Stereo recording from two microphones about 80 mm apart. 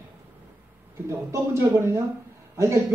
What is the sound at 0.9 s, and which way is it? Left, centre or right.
Speech, right.